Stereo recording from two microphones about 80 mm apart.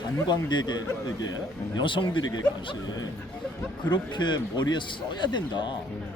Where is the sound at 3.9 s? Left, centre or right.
Left.